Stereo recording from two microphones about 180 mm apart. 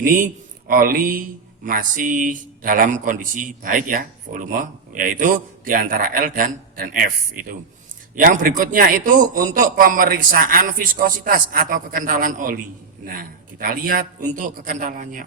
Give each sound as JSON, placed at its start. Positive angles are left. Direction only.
{"t": 0.0, "sound": "speech", "side_deg": -50}